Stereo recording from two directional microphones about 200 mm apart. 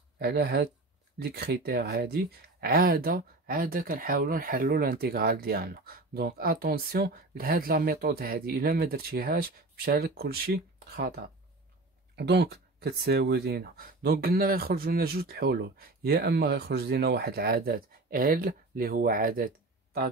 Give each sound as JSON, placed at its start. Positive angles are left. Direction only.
{"t": 0.2, "sound": "speech", "side_deg": -55}